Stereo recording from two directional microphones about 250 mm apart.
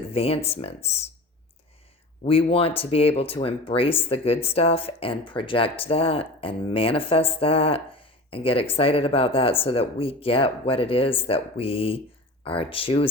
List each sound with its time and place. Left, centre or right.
0.1 s speech: left
2.2 s speech: left